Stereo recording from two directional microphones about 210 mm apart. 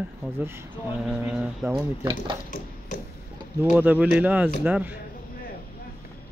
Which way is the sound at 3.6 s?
10° right (ahead or behind).